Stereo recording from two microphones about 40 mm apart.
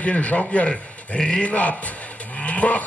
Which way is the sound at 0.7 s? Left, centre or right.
Centre.